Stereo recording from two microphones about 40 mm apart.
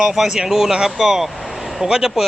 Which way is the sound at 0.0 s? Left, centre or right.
Centre.